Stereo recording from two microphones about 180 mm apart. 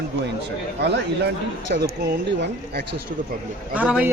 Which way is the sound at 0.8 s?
70° right (ahead or behind).